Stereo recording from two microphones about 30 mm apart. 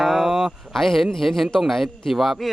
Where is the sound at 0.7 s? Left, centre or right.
Centre.